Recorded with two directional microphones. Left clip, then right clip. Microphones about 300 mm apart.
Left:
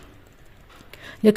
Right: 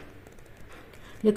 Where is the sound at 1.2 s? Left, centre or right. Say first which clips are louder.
Left 6 dB; left.